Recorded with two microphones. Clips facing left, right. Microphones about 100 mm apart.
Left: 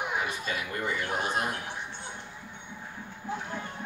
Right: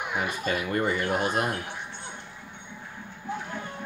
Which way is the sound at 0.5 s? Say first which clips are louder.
Right 6 dB; 55° right (ahead or behind).